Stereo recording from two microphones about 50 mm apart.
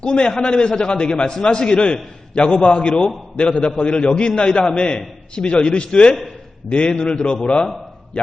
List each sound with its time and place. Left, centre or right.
0.0 s a man's voice: left